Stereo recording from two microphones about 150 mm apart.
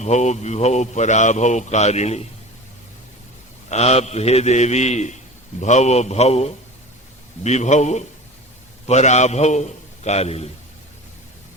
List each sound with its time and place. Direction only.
0.0 s a man's voice: 50° left (ahead or behind)
3.7 s a man's voice: 45° left (ahead or behind)